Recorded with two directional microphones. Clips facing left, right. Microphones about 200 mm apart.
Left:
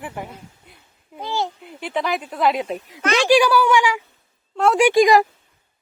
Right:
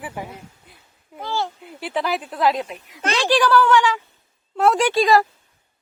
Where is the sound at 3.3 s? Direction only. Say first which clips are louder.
Left 1 dB; 10° left (ahead or behind).